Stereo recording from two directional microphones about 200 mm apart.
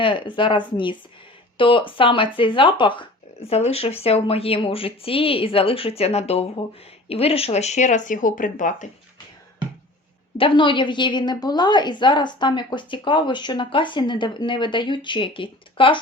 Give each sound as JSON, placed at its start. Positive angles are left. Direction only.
{"t": 0.0, "sound": "a woman's voice", "side_deg": 25}
{"t": 10.3, "sound": "a woman's voice", "side_deg": 25}